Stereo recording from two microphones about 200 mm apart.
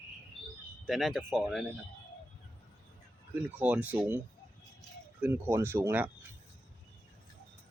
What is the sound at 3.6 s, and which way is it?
Speech, 5° right (ahead or behind).